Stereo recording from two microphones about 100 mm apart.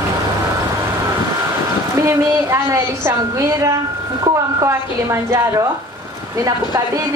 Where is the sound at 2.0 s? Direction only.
30° right (ahead or behind).